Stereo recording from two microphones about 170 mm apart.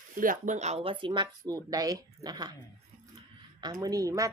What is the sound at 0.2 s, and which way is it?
A woman's voice, 50° right (ahead or behind).